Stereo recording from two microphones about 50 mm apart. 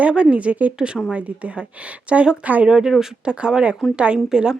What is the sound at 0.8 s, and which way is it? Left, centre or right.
Speech, centre.